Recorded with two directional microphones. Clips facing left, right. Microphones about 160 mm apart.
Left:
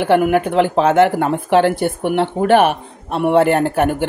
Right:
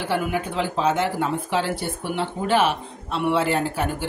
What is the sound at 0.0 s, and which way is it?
Speech, 65° left (ahead or behind).